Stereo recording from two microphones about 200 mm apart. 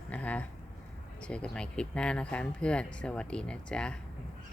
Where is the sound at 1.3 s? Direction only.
5° left (ahead or behind).